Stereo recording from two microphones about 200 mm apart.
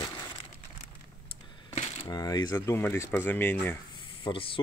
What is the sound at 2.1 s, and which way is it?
Speech, 20° left (ahead or behind).